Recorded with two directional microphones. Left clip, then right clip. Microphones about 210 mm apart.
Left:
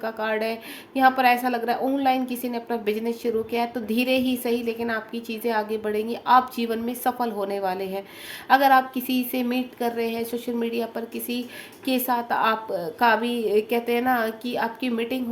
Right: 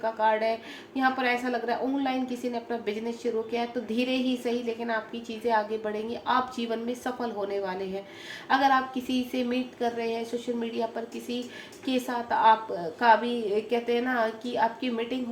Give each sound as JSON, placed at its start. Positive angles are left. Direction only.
{"t": 0.0, "sound": "a woman's voice", "side_deg": 55}